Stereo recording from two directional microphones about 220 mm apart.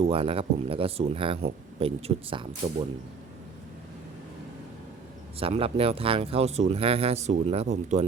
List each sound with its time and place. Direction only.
0.0 s speech: 25° right (ahead or behind)
5.4 s speech: 25° right (ahead or behind)